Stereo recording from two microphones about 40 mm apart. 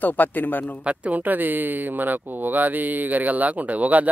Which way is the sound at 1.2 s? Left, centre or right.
Right.